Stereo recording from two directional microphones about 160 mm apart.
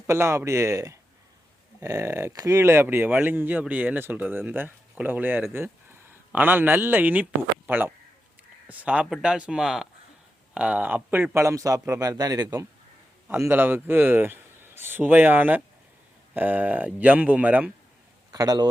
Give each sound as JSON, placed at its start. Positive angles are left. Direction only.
{"t": 0.1, "sound": "a man's voice", "side_deg": -15}
{"t": 18.3, "sound": "a man's voice", "side_deg": -25}